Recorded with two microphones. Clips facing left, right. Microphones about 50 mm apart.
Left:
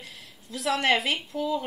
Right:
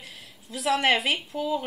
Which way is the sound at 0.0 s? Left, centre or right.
Centre.